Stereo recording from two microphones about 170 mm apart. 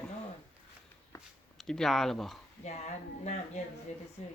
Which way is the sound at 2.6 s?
40° left (ahead or behind).